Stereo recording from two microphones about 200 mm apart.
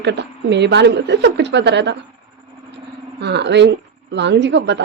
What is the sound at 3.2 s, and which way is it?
A woman's voice, 60° right (ahead or behind).